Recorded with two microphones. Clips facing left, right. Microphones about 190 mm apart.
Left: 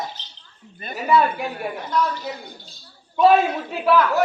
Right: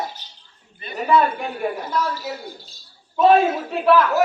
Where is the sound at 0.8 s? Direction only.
45° left (ahead or behind).